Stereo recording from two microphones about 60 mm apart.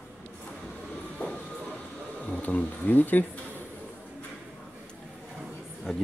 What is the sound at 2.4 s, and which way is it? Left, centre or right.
Speech, left.